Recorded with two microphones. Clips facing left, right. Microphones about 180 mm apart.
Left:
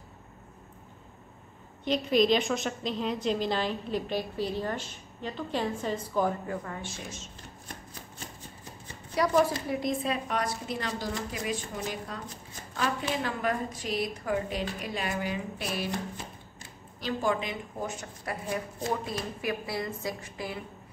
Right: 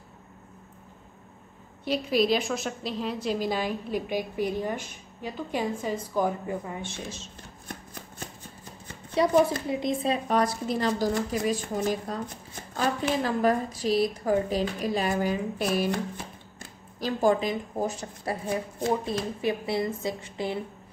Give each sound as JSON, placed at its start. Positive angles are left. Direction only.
{"t": 1.9, "sound": "a woman's voice", "side_deg": -5}
{"t": 9.1, "sound": "speech", "side_deg": -25}
{"t": 10.2, "sound": "a woman's voice", "side_deg": -35}